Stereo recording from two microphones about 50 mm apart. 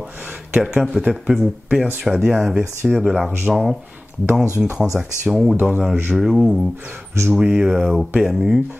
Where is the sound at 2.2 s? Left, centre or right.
Centre.